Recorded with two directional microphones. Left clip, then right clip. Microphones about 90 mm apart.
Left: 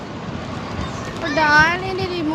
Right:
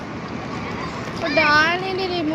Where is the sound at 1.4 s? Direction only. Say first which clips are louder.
Left 2 dB; 40° left (ahead or behind).